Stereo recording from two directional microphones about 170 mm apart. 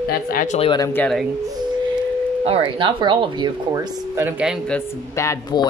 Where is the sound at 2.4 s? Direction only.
30° right (ahead or behind).